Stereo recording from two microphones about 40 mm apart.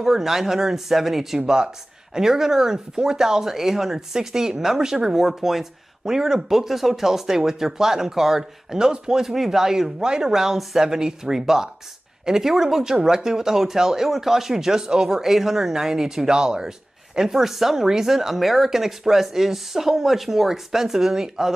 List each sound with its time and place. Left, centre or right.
0.0 s speech: centre
1.4 s speech: right
2.1 s speech: centre
9.2 s speech: centre